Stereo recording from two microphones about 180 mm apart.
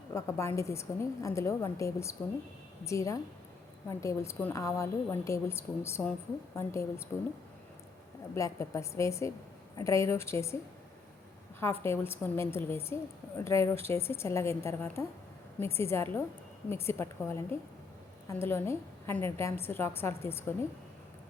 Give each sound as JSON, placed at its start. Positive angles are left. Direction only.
{"t": 0.1, "sound": "a woman's voice", "side_deg": 15}
{"t": 8.4, "sound": "a woman's voice", "side_deg": 15}
{"t": 11.6, "sound": "a woman's voice", "side_deg": 15}